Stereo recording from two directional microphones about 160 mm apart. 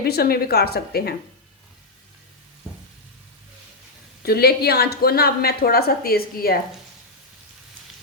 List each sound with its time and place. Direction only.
0.0 s a woman's voice: 75° left (ahead or behind)
4.2 s a woman's voice: 75° left (ahead or behind)